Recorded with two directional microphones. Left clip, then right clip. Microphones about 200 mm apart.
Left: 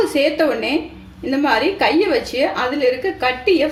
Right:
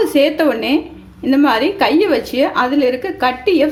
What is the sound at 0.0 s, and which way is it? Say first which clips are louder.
A woman's voice: right 3 dB; 45° right (ahead or behind).